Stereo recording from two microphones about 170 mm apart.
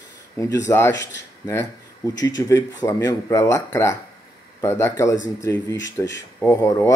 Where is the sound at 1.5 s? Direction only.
15° left (ahead or behind).